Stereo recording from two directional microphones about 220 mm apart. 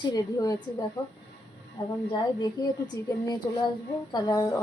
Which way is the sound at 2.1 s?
15° left (ahead or behind).